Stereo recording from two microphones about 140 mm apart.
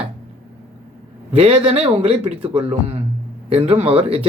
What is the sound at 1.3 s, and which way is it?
Speech, 45° right (ahead or behind).